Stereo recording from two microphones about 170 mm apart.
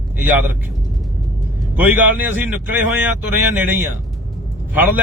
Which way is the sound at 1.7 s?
10° right (ahead or behind).